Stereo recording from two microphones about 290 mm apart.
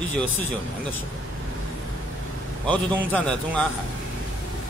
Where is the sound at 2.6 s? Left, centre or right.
Centre.